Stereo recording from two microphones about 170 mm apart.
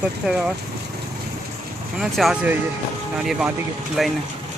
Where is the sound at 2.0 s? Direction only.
Centre (ahead or behind).